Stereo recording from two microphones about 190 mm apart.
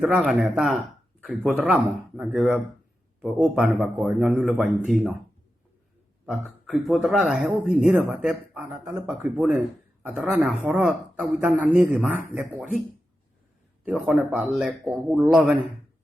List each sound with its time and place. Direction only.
0.0 s speech: centre (ahead or behind)
6.2 s speech: 5° right (ahead or behind)
13.8 s speech: 5° right (ahead or behind)